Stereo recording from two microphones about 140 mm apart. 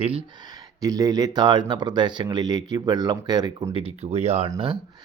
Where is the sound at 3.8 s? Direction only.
50° right (ahead or behind).